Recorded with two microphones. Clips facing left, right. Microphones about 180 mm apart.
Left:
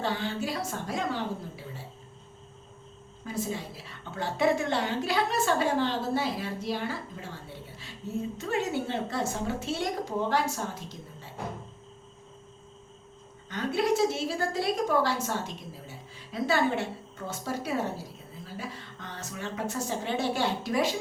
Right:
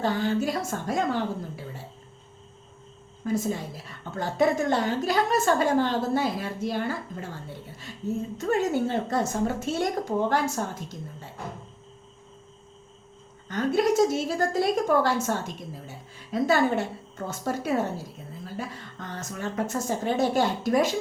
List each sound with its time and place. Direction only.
0.0 s a woman's voice: 45° right (ahead or behind)
3.2 s a woman's voice: 50° right (ahead or behind)
8.4 s a woman's voice: 45° right (ahead or behind)
13.5 s a woman's voice: 45° right (ahead or behind)